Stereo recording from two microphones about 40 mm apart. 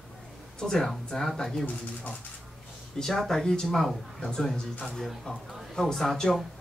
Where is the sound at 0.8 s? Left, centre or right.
Centre.